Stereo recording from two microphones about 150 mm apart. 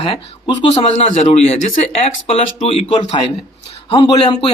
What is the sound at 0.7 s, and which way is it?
Speech, 45° left (ahead or behind).